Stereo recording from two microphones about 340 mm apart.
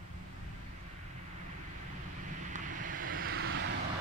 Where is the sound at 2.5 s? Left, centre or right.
Right.